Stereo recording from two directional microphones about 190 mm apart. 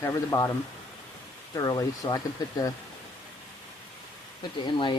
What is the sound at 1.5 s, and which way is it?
Speech, 20° left (ahead or behind).